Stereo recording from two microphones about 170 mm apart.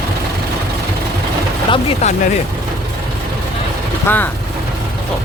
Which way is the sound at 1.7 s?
40° left (ahead or behind).